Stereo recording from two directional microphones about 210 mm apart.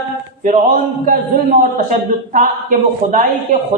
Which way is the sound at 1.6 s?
35° right (ahead or behind).